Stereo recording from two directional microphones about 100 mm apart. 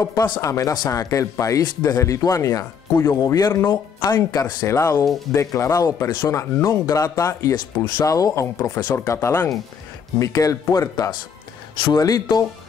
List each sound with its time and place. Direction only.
0.0 s speech: 35° left (ahead or behind)
4.6 s speech: 30° left (ahead or behind)